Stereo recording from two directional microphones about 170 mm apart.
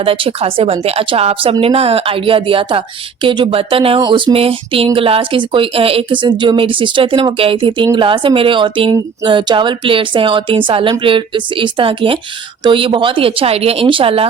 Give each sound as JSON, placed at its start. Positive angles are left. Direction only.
{"t": 0.0, "sound": "a woman's voice", "side_deg": -35}